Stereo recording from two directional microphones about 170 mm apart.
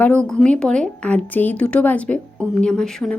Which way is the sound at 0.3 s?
5° left (ahead or behind).